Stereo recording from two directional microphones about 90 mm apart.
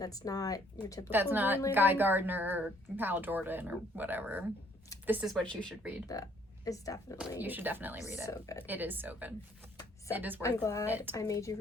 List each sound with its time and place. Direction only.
0.0 s speech: 45° left (ahead or behind)
1.1 s speech: 25° right (ahead or behind)
5.2 s speech: 5° left (ahead or behind)
6.1 s a woman's voice: 40° left (ahead or behind)
7.4 s speech: 20° right (ahead or behind)
10.4 s a woman's voice: 35° left (ahead or behind)
10.8 s speech: 20° right (ahead or behind)
11.1 s a woman's voice: 35° left (ahead or behind)